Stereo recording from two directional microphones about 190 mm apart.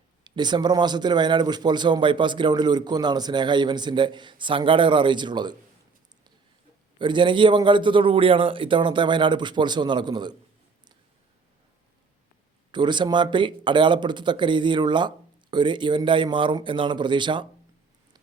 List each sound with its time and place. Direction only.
0.3 s a man's voice: 25° right (ahead or behind)
7.0 s a man's voice: 25° right (ahead or behind)
12.7 s a man's voice: 25° right (ahead or behind)